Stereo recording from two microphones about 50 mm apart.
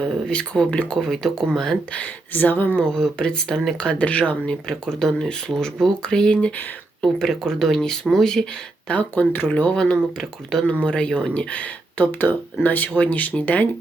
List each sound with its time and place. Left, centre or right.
0.0 s speech: centre
0.9 s speech: centre
1.4 s speech: centre
1.9 s speech: left
2.8 s speech: centre
4.4 s speech: centre
8.9 s speech: left
9.7 s speech: centre
10.7 s speech: left
11.9 s speech: left